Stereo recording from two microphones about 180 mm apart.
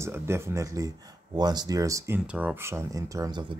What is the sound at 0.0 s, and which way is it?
Speech, 15° right (ahead or behind).